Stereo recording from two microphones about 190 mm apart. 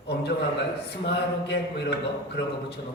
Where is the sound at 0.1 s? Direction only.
60° left (ahead or behind).